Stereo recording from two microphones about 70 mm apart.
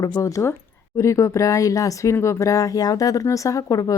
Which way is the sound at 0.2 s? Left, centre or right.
Left.